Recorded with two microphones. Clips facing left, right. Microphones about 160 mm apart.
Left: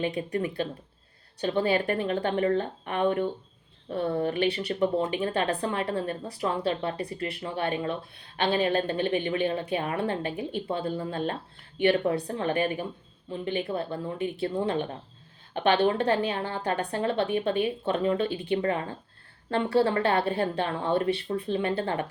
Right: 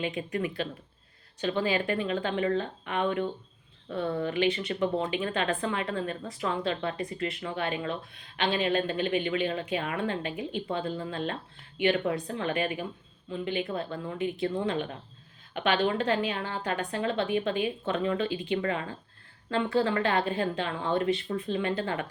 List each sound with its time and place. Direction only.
0.0 s a woman's voice: 35° left (ahead or behind)